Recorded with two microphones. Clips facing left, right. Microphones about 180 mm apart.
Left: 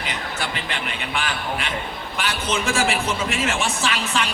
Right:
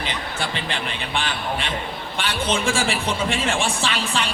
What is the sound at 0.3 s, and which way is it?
A man's voice, 30° right (ahead or behind).